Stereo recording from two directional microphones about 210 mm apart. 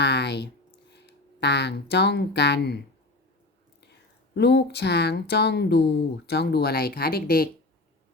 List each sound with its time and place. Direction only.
0.0 s a sound: 55° left (ahead or behind)
0.9 s speech: 55° left (ahead or behind)
4.4 s speech: 55° left (ahead or behind)